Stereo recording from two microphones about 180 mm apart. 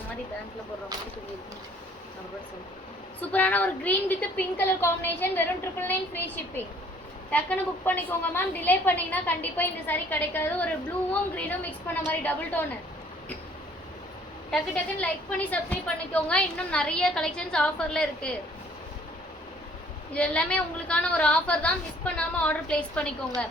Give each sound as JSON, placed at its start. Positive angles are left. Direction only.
{"t": 3.2, "sound": "a woman's voice", "side_deg": 10}
{"t": 14.5, "sound": "a woman's voice", "side_deg": 5}
{"t": 20.1, "sound": "a woman's voice", "side_deg": 5}